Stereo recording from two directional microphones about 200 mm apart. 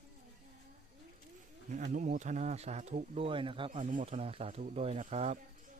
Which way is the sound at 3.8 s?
40° right (ahead or behind).